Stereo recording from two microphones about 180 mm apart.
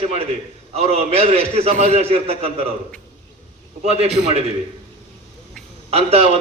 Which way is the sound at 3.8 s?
35° right (ahead or behind).